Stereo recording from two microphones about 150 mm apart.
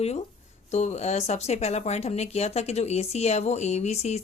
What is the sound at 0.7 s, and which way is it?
Speech, 50° left (ahead or behind).